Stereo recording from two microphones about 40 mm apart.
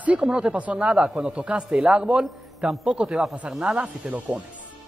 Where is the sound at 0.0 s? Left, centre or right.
Right.